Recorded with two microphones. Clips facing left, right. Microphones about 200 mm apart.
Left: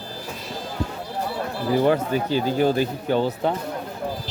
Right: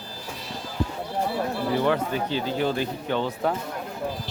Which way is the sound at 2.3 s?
45° left (ahead or behind).